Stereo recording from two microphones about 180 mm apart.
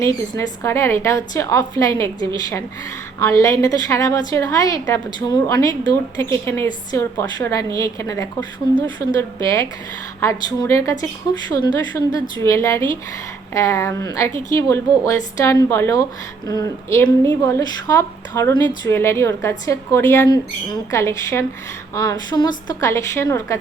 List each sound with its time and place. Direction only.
0.0 s a woman's voice: 15° left (ahead or behind)
3.2 s a woman's voice: 20° left (ahead or behind)